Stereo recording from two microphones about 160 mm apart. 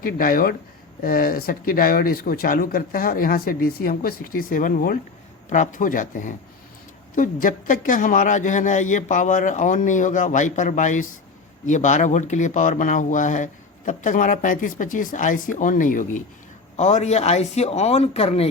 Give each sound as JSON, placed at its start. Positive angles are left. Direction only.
{"t": 0.0, "sound": "speech", "side_deg": 65}
{"t": 16.7, "sound": "speech", "side_deg": 45}